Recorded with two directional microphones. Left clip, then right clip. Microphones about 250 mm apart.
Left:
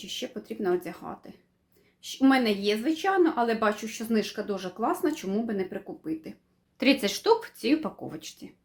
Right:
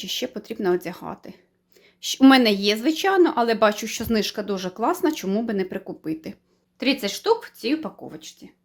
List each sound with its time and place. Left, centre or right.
0.0 s speech: right
6.7 s speech: centre